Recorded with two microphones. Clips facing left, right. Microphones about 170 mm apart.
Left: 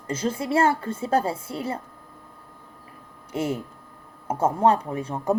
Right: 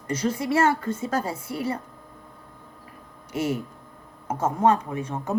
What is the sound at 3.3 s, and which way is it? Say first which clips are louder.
Speech: even; 30° left (ahead or behind).